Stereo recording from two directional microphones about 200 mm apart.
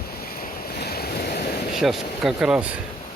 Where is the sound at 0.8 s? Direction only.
50° left (ahead or behind).